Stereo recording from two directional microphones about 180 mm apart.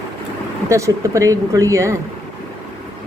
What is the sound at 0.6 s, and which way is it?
A woman's voice, 15° right (ahead or behind).